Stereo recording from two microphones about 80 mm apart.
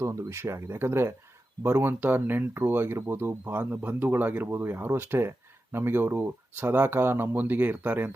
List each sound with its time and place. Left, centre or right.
0.0 s speech: right